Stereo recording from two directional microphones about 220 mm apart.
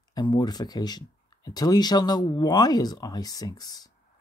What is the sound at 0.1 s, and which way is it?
Speech, 20° left (ahead or behind).